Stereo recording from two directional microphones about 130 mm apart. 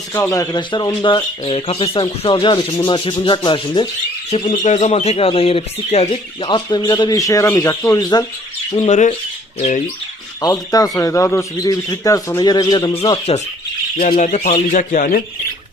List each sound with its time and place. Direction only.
0.1 s speech: 25° left (ahead or behind)
0.6 s speech: 35° left (ahead or behind)
4.3 s speech: 60° left (ahead or behind); by 8.3 s 30° left (ahead or behind)
8.8 s speech: 70° left (ahead or behind)
10.4 s speech: 30° left (ahead or behind); by 13.4 s 45° left (ahead or behind)
14.1 s speech: 70° left (ahead or behind); by 15.2 s 90° left